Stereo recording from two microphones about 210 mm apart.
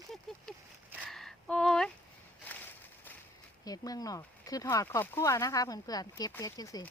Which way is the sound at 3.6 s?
15° left (ahead or behind).